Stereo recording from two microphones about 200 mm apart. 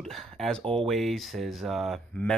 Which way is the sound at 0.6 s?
25° right (ahead or behind).